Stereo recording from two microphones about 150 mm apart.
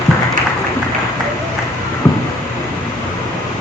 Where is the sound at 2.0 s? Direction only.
15° left (ahead or behind).